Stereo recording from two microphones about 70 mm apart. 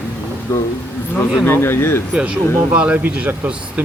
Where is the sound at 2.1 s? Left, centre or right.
Centre.